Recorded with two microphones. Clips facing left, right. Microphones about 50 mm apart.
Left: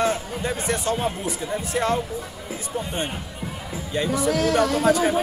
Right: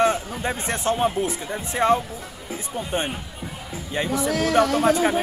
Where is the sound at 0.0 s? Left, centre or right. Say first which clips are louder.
Right 2 dB; right.